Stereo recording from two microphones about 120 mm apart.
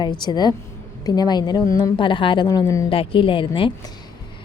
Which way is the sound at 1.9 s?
45° left (ahead or behind).